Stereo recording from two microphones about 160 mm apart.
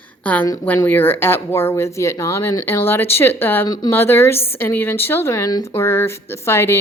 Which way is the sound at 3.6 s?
25° left (ahead or behind).